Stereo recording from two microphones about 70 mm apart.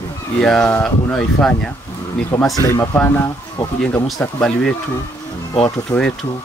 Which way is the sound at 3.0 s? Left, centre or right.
Left.